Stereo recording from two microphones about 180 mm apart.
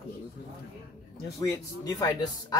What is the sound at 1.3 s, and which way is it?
Speech, 15° left (ahead or behind).